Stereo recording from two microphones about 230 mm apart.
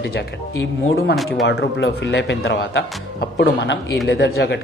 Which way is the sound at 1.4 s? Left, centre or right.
Left.